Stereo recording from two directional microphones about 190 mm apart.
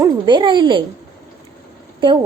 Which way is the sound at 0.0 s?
25° right (ahead or behind).